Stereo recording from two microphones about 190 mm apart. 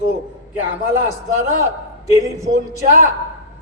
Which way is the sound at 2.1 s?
15° right (ahead or behind).